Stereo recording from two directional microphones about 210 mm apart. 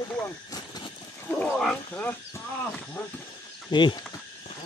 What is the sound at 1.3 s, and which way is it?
Speech, 5° left (ahead or behind).